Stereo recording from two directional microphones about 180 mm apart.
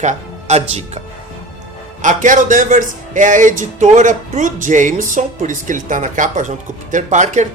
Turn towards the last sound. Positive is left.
turn(degrees=-45)  # may be behind; listen again after turning